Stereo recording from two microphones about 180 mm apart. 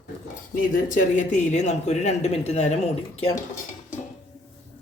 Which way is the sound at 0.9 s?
45° left (ahead or behind).